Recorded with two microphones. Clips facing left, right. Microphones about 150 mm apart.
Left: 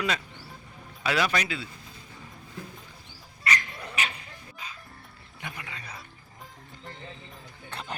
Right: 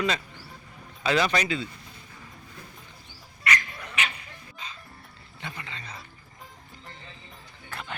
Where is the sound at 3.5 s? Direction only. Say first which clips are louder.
Right 1 dB; 30° left (ahead or behind).